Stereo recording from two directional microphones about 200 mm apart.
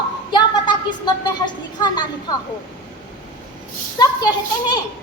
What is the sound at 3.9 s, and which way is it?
Speech, 20° left (ahead or behind).